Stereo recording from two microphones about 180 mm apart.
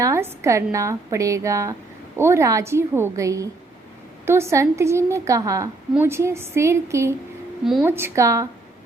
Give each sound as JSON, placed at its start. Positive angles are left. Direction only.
{"t": 0.0, "sound": "a woman's voice", "side_deg": -15}
{"t": 7.6, "sound": "a woman's voice", "side_deg": 0}
{"t": 7.9, "sound": "a woman's voice", "side_deg": -15}